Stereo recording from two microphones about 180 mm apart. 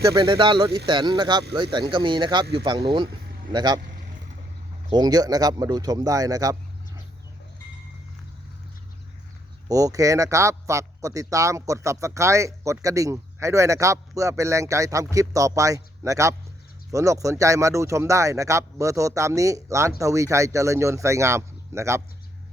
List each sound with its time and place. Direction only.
0.0 s speech: 20° right (ahead or behind)
4.9 s speech: 20° right (ahead or behind)
9.6 s speech: 20° right (ahead or behind)